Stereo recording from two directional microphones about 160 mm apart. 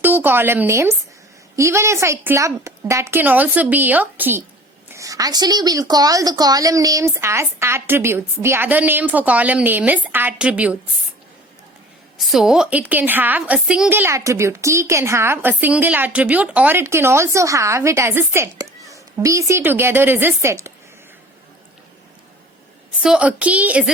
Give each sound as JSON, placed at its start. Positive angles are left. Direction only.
{"t": 0.0, "sound": "a woman's voice", "side_deg": -10}
{"t": 12.1, "sound": "a woman's voice", "side_deg": 0}
{"t": 23.0, "sound": "a woman's voice", "side_deg": -5}